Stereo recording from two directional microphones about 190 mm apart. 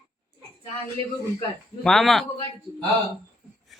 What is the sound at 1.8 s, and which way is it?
Speech, centre (ahead or behind).